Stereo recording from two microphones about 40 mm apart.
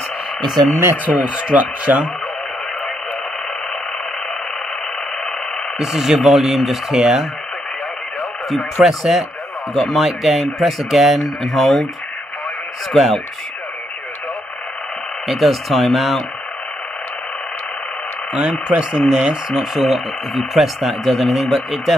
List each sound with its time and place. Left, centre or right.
1.0 s speech: right
5.8 s speech: centre
8.8 s speech: centre
12.9 s speech: centre
15.2 s speech: centre
18.3 s speech: right
19.7 s speech: centre